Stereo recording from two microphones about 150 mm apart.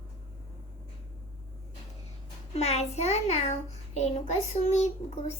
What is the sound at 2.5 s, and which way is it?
A child's voice, 45° left (ahead or behind).